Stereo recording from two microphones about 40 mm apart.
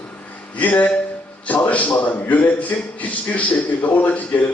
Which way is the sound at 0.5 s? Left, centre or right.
Left.